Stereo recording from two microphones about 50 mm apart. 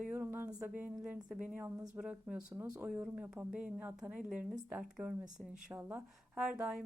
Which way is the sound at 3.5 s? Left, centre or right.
Centre.